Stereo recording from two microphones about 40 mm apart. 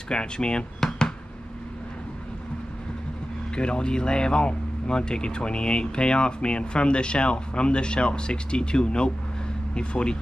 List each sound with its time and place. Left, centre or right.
0.1 s speech: left
0.7 s a sound: centre
3.5 s speech: left